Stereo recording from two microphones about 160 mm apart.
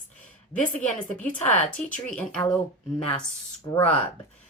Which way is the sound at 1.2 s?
10° left (ahead or behind).